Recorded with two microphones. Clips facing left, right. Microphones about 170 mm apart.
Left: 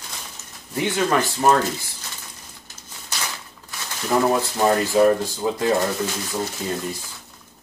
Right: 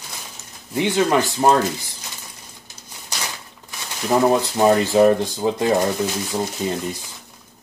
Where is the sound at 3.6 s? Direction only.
20° right (ahead or behind).